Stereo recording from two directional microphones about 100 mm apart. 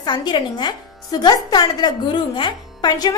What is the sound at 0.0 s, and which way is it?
Speech, 50° left (ahead or behind).